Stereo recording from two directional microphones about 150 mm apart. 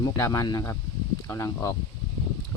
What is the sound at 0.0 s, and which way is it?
Speech, 20° left (ahead or behind).